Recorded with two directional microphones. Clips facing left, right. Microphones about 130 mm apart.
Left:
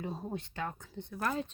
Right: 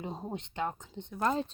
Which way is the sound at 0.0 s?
20° right (ahead or behind).